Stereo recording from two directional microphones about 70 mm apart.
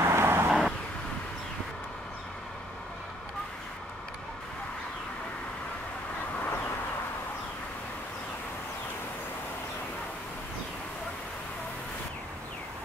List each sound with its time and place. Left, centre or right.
0.0 s vehicle: right
0.5 s vehicle: centre